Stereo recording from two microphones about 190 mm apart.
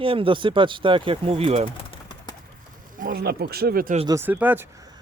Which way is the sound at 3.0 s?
50° right (ahead or behind).